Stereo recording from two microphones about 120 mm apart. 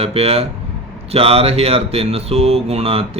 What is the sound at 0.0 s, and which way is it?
Speech, 55° right (ahead or behind).